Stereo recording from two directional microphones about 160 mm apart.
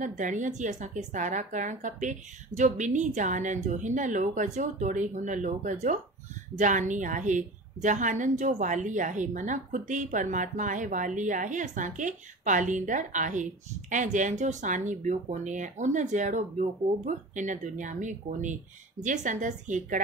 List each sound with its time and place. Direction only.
0.0 s a woman's voice: 50° right (ahead or behind)